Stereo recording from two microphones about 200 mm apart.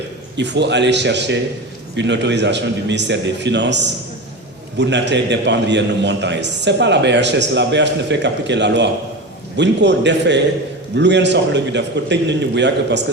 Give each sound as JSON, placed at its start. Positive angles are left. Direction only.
{"t": 0.3, "sound": "a man's voice", "side_deg": -60}